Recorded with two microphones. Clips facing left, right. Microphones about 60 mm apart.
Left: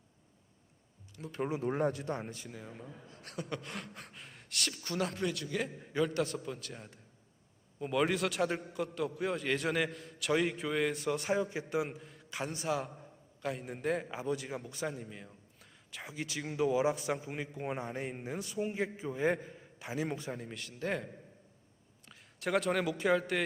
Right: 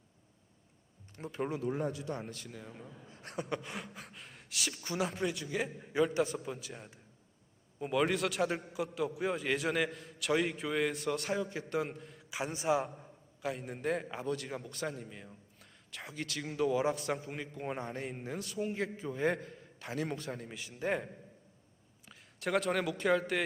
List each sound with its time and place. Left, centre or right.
1.2 s speech: right
1.6 s speech: left
2.3 s a man's voice: centre
3.1 s speech: right
3.6 s a man's voice: centre
13.4 s a man's voice: centre
20.6 s a man's voice: centre
22.0 s speech: centre